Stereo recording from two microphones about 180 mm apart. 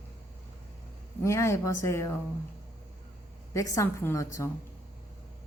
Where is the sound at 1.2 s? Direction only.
15° left (ahead or behind).